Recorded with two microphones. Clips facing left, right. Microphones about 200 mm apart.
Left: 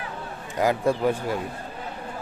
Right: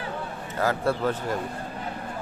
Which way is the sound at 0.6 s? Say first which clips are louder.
Left 3 dB; 15° left (ahead or behind).